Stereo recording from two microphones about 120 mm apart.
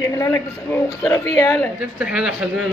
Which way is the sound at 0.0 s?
20° left (ahead or behind).